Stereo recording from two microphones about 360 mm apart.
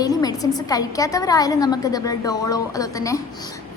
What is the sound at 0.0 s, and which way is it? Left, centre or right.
A woman's voice, centre.